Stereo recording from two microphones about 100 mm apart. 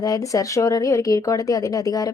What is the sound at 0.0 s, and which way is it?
A woman's voice, 35° left (ahead or behind).